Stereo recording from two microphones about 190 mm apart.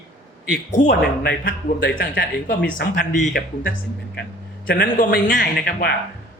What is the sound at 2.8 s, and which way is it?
A man's voice, 40° left (ahead or behind).